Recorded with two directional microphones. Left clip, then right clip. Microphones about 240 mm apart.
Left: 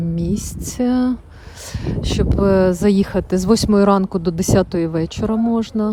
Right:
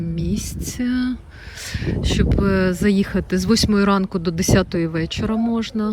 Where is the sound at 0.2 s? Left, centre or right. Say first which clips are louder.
Left 3 dB; left.